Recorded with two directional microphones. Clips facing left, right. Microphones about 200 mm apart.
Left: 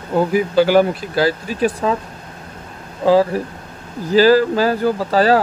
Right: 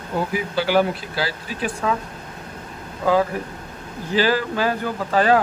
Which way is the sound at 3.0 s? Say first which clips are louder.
Left 6 dB; 30° left (ahead or behind).